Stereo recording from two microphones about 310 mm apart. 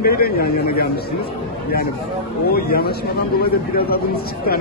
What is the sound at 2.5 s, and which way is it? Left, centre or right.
Speech, left.